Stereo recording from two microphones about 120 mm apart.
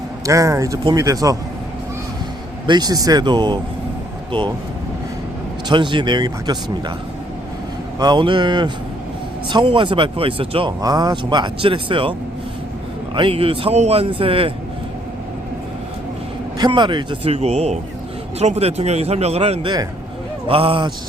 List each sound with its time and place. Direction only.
0.3 s speech: 25° right (ahead or behind)
2.6 s speech: 35° right (ahead or behind)
5.6 s speech: 40° right (ahead or behind)
7.9 s speech: 35° right (ahead or behind)
10.7 s speech: 35° right (ahead or behind)
13.1 s speech: 50° right (ahead or behind)
16.6 s speech: 40° right (ahead or behind)
17.2 s speech: 60° right (ahead or behind)
19.6 s speech: 35° right (ahead or behind)
20.5 s speech: 50° right (ahead or behind)